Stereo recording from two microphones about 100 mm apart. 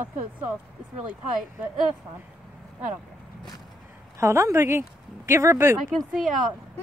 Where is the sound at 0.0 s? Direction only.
15° right (ahead or behind).